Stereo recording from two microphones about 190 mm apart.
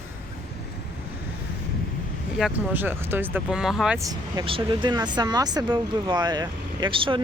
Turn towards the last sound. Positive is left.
turn(degrees=-25)  # may be behind; listen again after turning